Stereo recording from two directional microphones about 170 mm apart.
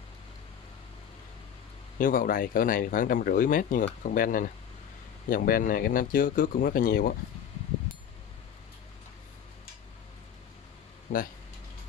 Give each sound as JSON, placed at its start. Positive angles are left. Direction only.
{"t": 2.0, "sound": "speech", "side_deg": 55}
{"t": 11.1, "sound": "speech", "side_deg": 50}